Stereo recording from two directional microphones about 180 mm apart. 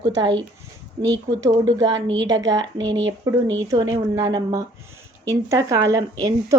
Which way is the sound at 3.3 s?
20° right (ahead or behind).